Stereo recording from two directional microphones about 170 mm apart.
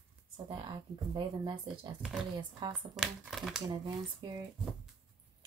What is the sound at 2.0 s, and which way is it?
Speech, 5° right (ahead or behind).